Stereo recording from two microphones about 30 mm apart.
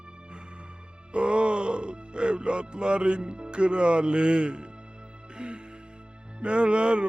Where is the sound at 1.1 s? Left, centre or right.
Right.